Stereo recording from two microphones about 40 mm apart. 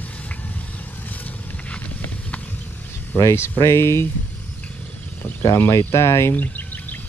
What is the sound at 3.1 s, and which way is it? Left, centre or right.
Speech, left.